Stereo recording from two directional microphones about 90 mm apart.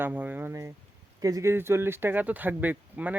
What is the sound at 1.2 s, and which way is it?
Speech, 40° right (ahead or behind).